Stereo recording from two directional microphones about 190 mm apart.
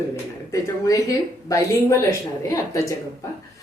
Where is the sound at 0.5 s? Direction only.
15° left (ahead or behind).